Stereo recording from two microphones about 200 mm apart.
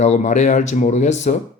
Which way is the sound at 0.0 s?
35° left (ahead or behind).